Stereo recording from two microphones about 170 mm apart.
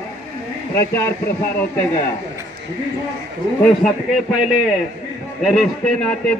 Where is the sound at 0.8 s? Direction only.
15° left (ahead or behind).